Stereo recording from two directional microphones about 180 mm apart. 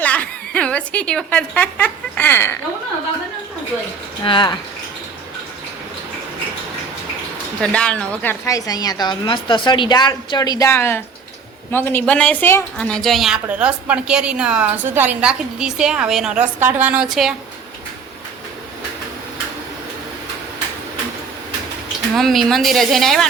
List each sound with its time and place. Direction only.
0.0 s a sound: 5° left (ahead or behind)
4.2 s a woman's voice: 25° left (ahead or behind)
7.6 s a woman's voice: 5° left (ahead or behind)
22.1 s speech: centre (ahead or behind)